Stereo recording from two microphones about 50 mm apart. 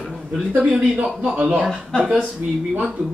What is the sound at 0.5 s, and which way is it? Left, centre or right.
Speech, right.